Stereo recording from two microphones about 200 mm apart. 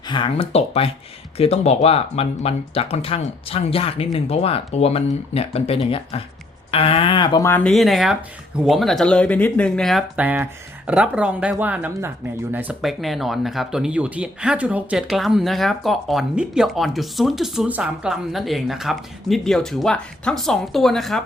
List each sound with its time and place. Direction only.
0.1 s speech: 25° left (ahead or behind); by 21.2 s centre (ahead or behind)